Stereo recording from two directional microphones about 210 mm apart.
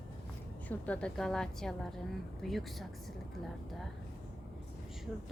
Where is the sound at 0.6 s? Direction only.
5° left (ahead or behind).